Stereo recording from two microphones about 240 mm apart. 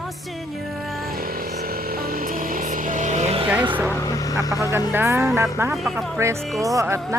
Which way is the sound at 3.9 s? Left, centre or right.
Centre.